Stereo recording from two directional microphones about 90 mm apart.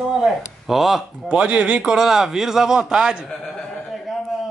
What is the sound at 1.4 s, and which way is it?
A man's voice, 15° right (ahead or behind).